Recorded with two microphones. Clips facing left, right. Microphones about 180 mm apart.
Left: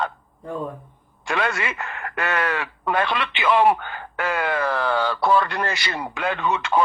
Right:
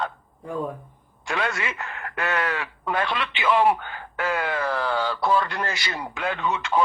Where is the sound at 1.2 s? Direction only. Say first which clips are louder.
Left 3 dB; 65° left (ahead or behind).